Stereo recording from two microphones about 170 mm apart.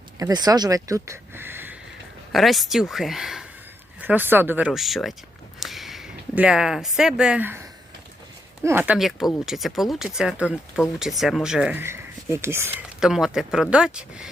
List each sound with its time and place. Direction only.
0.2 s speech: 20° right (ahead or behind)
2.3 s speech: centre (ahead or behind)
13.0 s speech: 5° right (ahead or behind)